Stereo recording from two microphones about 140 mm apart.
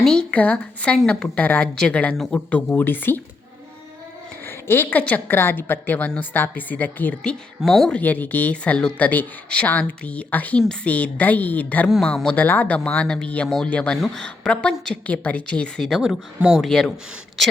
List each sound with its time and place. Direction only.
0.0 s speech: 5° left (ahead or behind)
4.4 s speech: 15° left (ahead or behind)